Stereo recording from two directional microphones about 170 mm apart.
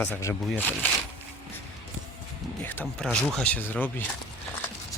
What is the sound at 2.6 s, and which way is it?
Speech, 10° left (ahead or behind).